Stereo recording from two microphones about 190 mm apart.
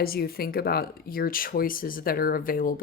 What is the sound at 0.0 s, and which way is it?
Speech, 50° left (ahead or behind).